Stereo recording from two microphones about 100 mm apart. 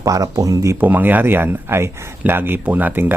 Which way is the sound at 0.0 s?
35° right (ahead or behind).